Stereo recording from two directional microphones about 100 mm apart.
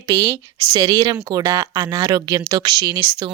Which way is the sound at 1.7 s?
50° right (ahead or behind).